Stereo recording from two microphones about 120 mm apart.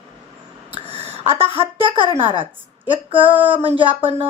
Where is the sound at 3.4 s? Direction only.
50° right (ahead or behind).